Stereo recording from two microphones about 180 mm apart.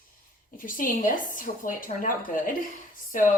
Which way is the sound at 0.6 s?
50° left (ahead or behind).